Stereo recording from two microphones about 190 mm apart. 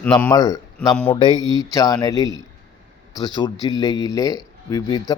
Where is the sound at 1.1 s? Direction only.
25° left (ahead or behind).